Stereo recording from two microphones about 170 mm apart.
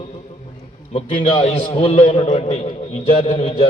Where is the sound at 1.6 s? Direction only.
30° left (ahead or behind).